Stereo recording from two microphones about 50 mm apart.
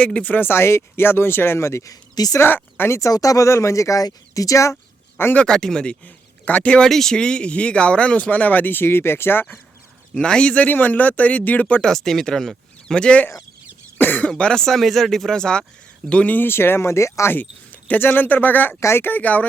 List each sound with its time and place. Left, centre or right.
0.0 s speech: left
0.3 s speech: left
2.9 s speech: left
5.4 s speech: centre
6.4 s speech: left
6.8 s speech: centre; by 9.5 s left
10.2 s speech: centre
11.8 s speech: centre
14.0 s speech: left
14.3 s speech: centre
16.5 s speech: left
18.1 s speech: left
18.8 s speech: left
19.0 s speech: left